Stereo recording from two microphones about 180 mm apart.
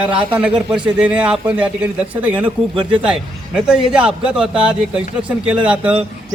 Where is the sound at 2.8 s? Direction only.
25° right (ahead or behind).